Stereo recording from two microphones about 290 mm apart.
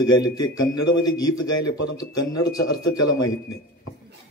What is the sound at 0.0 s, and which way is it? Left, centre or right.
A man's voice, left.